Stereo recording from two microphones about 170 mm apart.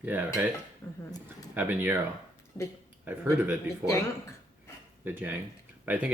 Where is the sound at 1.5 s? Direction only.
10° right (ahead or behind).